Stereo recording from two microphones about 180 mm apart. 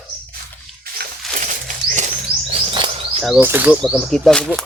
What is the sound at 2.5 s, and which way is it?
Music, 30° right (ahead or behind).